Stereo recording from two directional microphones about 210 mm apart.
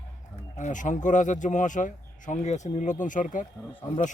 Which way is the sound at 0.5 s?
35° left (ahead or behind).